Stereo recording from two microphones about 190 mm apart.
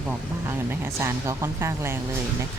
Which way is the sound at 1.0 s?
15° right (ahead or behind).